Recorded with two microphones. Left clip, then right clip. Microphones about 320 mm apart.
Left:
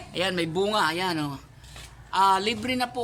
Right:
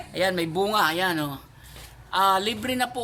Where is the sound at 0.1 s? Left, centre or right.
Centre.